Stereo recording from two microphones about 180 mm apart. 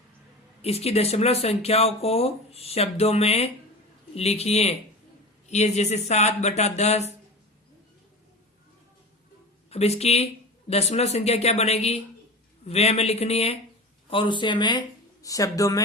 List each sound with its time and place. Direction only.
0.6 s speech: 35° left (ahead or behind)
9.6 s speech: 35° left (ahead or behind); by 15.8 s 20° left (ahead or behind)